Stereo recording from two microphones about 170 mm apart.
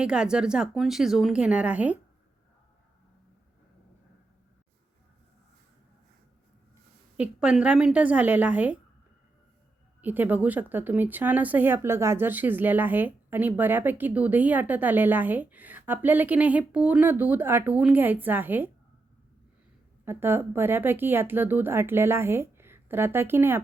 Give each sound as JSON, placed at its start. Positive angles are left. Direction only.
{"t": 0.0, "sound": "a woman's voice", "side_deg": -5}
{"t": 7.2, "sound": "speech", "side_deg": -5}
{"t": 10.0, "sound": "speech", "side_deg": -10}
{"t": 20.1, "sound": "speech", "side_deg": -15}